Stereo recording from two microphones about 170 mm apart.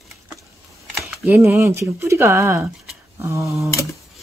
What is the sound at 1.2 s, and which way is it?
Speech, 10° right (ahead or behind).